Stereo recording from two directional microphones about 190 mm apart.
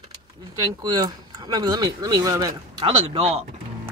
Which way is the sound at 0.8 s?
20° right (ahead or behind).